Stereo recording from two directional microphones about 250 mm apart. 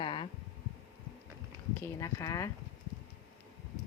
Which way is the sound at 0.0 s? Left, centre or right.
Centre.